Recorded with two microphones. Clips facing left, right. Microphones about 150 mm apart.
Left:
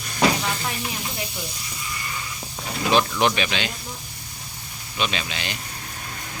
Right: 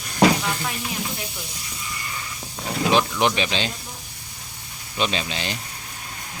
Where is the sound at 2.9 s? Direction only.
20° right (ahead or behind).